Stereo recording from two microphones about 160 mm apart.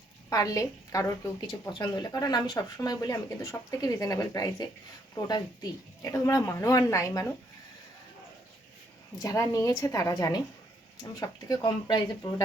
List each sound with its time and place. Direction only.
0.3 s a woman's voice: 20° left (ahead or behind)
6.0 s a woman's voice: 20° left (ahead or behind)
9.1 s a woman's voice: 20° left (ahead or behind)